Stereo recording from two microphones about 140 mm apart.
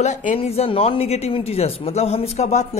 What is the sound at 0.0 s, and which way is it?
Speech, 60° left (ahead or behind).